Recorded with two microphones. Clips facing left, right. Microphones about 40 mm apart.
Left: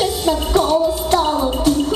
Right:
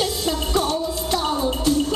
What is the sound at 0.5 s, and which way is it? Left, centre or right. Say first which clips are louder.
Music: left 8 dB; left.